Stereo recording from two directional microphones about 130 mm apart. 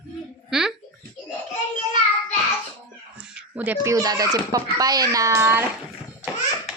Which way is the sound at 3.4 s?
10° right (ahead or behind).